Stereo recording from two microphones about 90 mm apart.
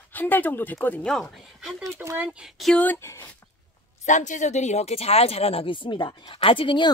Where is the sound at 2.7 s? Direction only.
20° left (ahead or behind).